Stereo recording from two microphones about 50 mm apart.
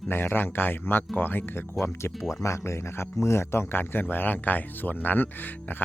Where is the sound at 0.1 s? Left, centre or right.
Left.